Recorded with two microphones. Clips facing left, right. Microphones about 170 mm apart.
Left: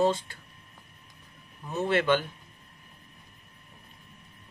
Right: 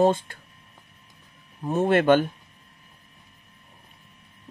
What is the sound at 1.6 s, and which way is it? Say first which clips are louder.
Speech: right 7 dB; 55° right (ahead or behind).